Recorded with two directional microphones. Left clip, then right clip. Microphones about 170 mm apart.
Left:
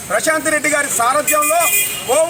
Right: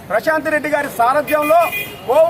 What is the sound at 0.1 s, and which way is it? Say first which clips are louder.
A man's voice: even; 20° right (ahead or behind).